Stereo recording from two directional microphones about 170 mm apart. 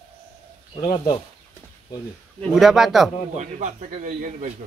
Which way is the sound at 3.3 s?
45° right (ahead or behind).